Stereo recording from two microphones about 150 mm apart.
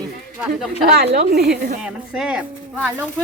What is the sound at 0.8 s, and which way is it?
Speech, 90° right.